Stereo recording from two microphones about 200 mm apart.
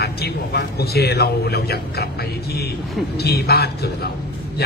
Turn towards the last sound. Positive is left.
turn(degrees=50)  # may be behind; listen again after turning